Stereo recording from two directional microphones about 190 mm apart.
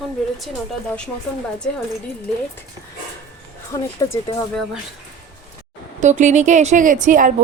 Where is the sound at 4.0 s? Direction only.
20° left (ahead or behind).